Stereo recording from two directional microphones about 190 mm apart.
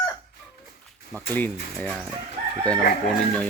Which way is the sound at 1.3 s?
10° left (ahead or behind).